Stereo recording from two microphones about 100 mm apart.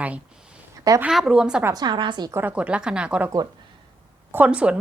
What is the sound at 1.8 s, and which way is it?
Speech, 50° right (ahead or behind).